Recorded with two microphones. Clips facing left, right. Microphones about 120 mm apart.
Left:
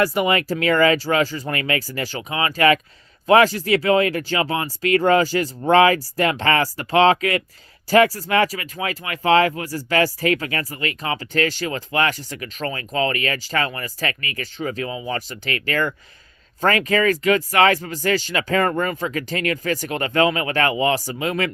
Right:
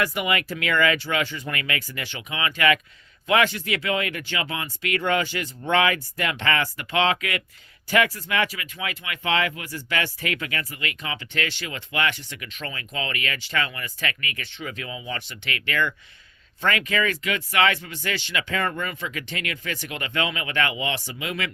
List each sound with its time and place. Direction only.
0.0 s speech: 35° left (ahead or behind)